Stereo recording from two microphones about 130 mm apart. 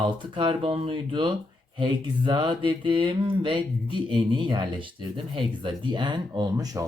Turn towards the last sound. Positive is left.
turn(degrees=-30)  # may be behind; listen again after turning